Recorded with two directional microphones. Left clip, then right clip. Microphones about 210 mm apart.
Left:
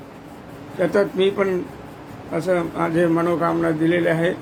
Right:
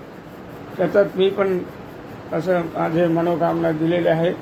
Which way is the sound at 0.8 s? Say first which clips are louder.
Right 2 dB; 25° left (ahead or behind).